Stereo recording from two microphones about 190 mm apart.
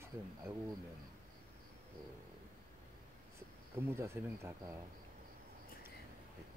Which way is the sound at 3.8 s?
15° right (ahead or behind).